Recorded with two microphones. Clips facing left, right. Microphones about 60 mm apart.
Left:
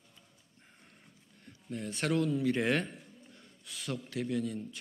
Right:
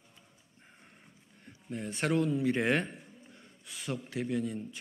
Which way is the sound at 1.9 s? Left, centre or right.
Centre.